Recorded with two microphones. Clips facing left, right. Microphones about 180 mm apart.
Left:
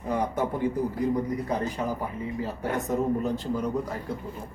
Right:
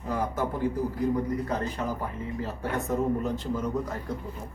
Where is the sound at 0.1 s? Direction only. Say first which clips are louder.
Left 2 dB; 15° left (ahead or behind).